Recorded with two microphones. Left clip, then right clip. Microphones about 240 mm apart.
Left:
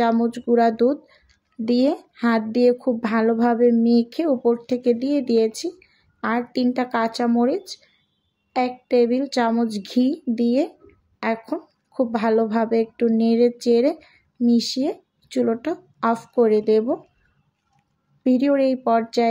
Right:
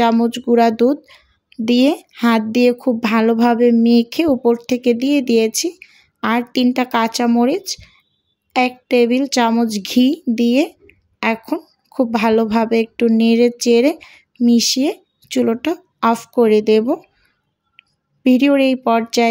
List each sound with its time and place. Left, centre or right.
0.0 s speech: right
18.2 s speech: right